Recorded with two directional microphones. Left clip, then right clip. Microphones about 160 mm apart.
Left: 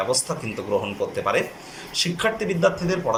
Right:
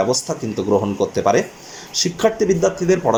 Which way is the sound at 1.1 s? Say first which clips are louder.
Right 6 dB; 40° right (ahead or behind).